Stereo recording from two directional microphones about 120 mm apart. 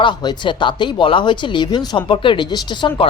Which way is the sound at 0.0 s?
40° left (ahead or behind).